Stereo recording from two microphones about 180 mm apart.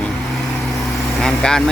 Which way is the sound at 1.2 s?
5° left (ahead or behind).